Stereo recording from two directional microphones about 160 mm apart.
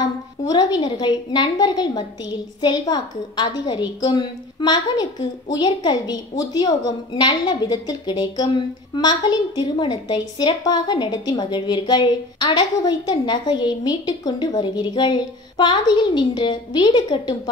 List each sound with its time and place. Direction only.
0.5 s a woman's voice: 25° left (ahead or behind)